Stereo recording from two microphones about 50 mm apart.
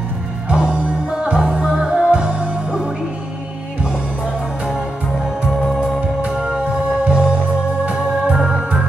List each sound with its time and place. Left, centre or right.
0.5 s music: right
6.2 s music: centre
8.3 s organ: centre